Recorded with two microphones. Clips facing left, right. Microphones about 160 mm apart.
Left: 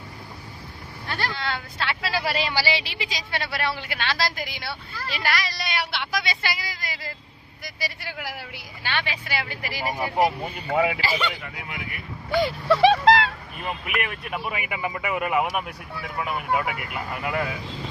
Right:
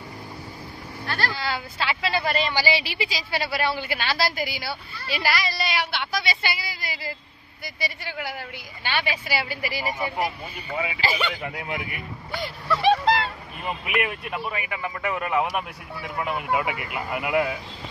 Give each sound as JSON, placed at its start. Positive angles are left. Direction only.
{"t": 1.0, "sound": "vehicle", "side_deg": 20}
{"t": 1.3, "sound": "speech", "side_deg": -5}
{"t": 10.2, "sound": "speech", "side_deg": 70}
{"t": 12.3, "sound": "speech", "side_deg": 85}
{"t": 13.6, "sound": "speech", "side_deg": 0}
{"t": 14.4, "sound": "speech", "side_deg": 10}